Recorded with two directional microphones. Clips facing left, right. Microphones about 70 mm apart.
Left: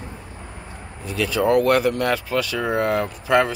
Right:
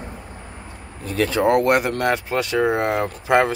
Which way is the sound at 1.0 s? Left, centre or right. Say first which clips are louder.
Right 3 dB; right.